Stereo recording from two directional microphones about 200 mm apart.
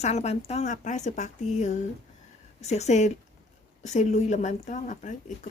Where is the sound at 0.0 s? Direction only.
35° left (ahead or behind).